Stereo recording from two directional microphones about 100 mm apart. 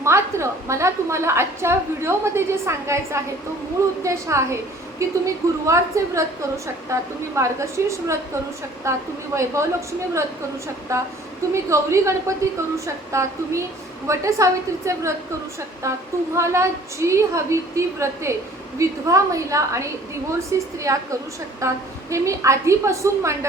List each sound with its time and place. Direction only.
0.0 s a woman's voice: 30° right (ahead or behind)
10.9 s a woman's voice: 30° right (ahead or behind)